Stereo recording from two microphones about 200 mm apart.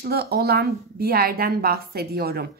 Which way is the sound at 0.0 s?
50° right (ahead or behind).